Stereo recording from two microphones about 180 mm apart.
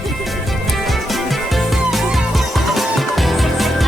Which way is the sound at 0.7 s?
Centre (ahead or behind).